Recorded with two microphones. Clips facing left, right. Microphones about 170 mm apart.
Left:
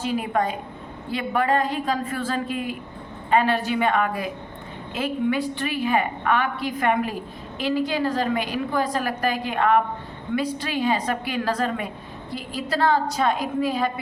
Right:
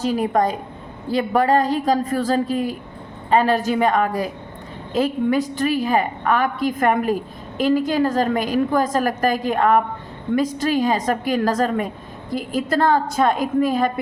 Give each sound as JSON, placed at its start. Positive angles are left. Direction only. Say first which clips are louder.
{"t": 0.0, "sound": "a woman's voice", "louder": "right 5 dB", "side_deg": -40}